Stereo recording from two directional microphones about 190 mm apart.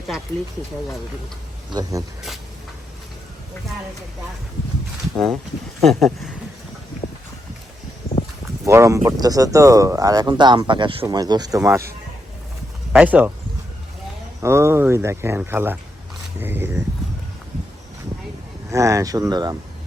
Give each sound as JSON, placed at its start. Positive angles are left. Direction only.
{"t": 1.7, "sound": "speech", "side_deg": -20}
{"t": 5.1, "sound": "speech", "side_deg": 0}
{"t": 8.6, "sound": "speech", "side_deg": -15}
{"t": 12.9, "sound": "speech", "side_deg": -10}
{"t": 14.4, "sound": "speech", "side_deg": -15}
{"t": 18.7, "sound": "speech", "side_deg": -15}